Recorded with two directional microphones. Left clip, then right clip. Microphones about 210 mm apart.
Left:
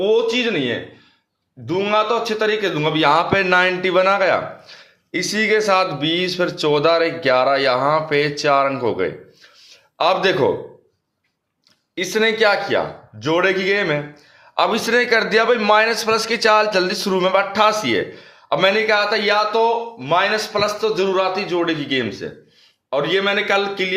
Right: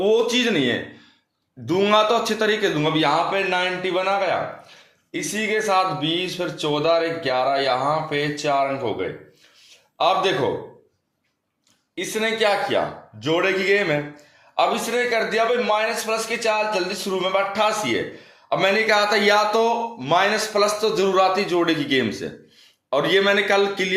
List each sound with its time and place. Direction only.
0.0 s a man's voice: 5° left (ahead or behind); by 10.5 s 30° left (ahead or behind)
11.9 s a man's voice: 30° left (ahead or behind)
14.5 s a man's voice: 35° left (ahead or behind); by 20.4 s centre (ahead or behind)
20.5 s a man's voice: 10° left (ahead or behind)